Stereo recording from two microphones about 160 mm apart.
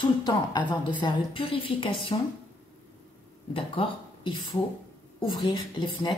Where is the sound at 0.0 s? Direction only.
30° left (ahead or behind).